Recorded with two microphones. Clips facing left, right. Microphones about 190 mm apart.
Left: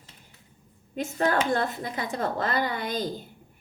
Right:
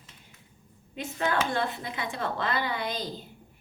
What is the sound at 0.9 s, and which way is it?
Speech, 45° left (ahead or behind).